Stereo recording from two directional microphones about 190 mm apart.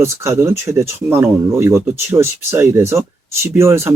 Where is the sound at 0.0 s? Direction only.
15° right (ahead or behind).